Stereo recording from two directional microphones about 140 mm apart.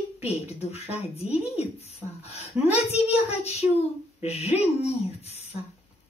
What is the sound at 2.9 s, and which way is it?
Speech, 50° left (ahead or behind).